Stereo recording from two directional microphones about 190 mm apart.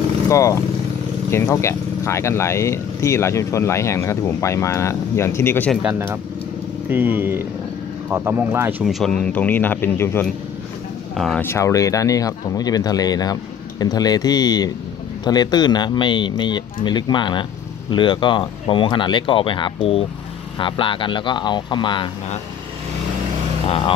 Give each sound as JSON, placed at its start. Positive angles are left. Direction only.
{"t": 0.3, "sound": "speech", "side_deg": 15}
{"t": 5.8, "sound": "speech", "side_deg": -10}
{"t": 8.8, "sound": "speech", "side_deg": 5}
{"t": 11.4, "sound": "speech", "side_deg": 15}